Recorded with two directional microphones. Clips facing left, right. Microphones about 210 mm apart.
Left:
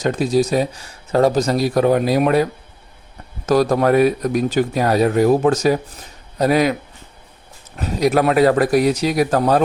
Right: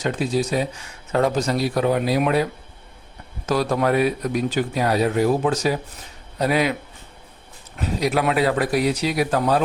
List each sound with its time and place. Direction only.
0.0 s speech: 40° left (ahead or behind)
7.8 s speech: 45° left (ahead or behind)